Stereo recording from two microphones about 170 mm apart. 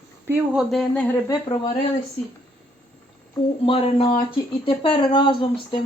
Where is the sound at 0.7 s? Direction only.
Centre (ahead or behind).